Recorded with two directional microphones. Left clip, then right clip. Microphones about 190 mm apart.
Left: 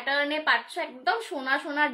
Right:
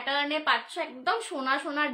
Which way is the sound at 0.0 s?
15° right (ahead or behind).